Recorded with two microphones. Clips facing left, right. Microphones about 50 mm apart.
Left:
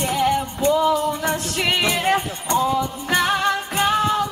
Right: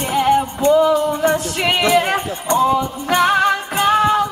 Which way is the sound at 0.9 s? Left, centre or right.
Centre.